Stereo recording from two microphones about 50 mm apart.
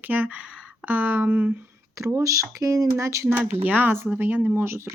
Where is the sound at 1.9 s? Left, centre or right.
Right.